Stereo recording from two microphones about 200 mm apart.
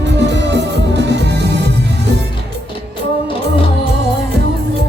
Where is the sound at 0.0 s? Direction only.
60° right (ahead or behind).